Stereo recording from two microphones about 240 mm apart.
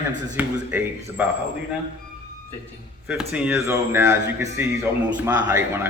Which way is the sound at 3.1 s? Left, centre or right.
Centre.